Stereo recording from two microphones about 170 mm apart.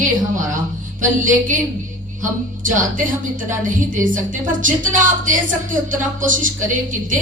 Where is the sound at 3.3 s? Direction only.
50° right (ahead or behind).